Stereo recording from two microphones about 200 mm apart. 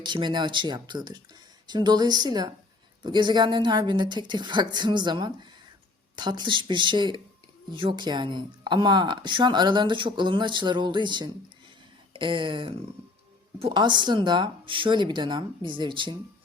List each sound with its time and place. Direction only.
0.0 s speech: 20° right (ahead or behind)